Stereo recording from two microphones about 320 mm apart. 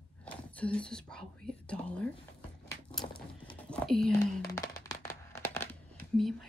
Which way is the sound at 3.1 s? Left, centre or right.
Left.